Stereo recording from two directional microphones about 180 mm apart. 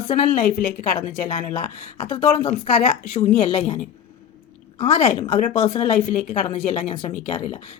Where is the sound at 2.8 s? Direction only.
40° left (ahead or behind).